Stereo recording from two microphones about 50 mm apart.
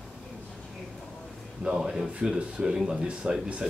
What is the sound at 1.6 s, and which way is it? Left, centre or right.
Speech, centre.